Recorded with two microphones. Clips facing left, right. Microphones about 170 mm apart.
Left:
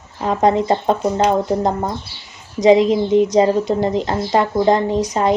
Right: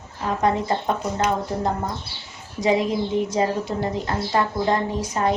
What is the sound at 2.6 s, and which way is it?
Speech, 20° left (ahead or behind).